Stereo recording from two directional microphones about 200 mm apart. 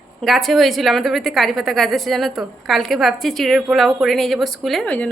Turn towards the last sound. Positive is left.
turn(degrees=5)  # may be behind; listen again after turning